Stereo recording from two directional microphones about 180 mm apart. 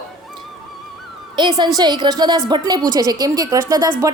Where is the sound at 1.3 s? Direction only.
25° right (ahead or behind).